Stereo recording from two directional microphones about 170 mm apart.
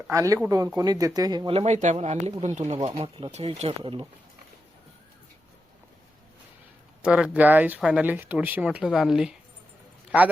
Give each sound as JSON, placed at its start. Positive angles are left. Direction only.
{"t": 0.1, "sound": "speech", "side_deg": -20}
{"t": 7.0, "sound": "a man's voice", "side_deg": -5}